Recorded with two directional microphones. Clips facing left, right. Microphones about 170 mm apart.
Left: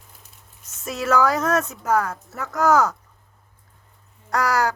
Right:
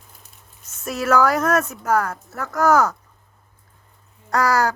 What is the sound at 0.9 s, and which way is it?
Speech, 5° right (ahead or behind).